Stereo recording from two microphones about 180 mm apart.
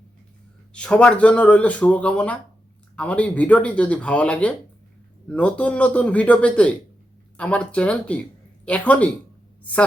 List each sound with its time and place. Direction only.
0.7 s speech: 5° left (ahead or behind)